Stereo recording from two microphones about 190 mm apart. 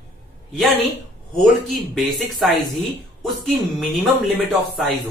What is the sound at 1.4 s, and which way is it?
A man's voice, centre (ahead or behind).